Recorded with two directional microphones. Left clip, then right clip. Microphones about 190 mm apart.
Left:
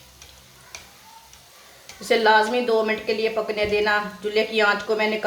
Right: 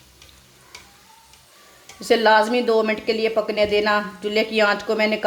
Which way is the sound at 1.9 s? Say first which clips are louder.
Right 2 dB; 45° right (ahead or behind).